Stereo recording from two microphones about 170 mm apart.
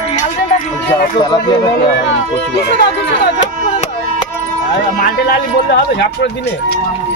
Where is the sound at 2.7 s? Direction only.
75° left (ahead or behind).